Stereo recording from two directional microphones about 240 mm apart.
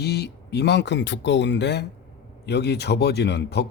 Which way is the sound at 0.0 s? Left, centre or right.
Left.